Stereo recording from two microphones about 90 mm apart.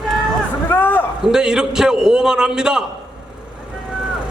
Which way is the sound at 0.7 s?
20° left (ahead or behind).